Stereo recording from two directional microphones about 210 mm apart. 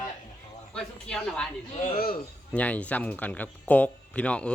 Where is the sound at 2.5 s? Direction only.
5° left (ahead or behind).